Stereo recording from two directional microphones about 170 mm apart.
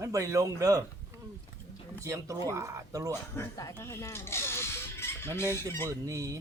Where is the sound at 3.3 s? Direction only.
15° left (ahead or behind).